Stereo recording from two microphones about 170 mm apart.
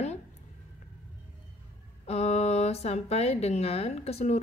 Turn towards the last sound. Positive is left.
turn(degrees=40)  # may be behind; listen again after turning